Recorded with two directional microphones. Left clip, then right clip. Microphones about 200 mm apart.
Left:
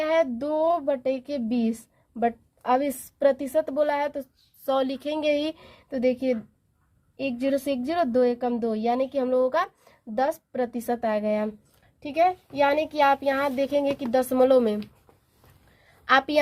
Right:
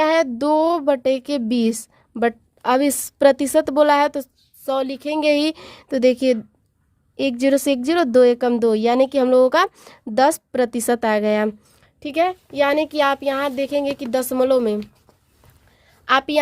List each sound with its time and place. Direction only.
0.0 s a sound: 45° right (ahead or behind)
4.6 s a woman's voice: 20° right (ahead or behind)
16.0 s a woman's voice: 25° right (ahead or behind)